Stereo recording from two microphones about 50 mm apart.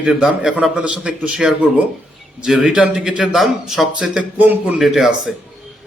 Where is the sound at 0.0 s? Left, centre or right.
Centre.